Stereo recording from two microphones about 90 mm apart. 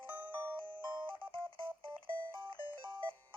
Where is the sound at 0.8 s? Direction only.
65° right (ahead or behind).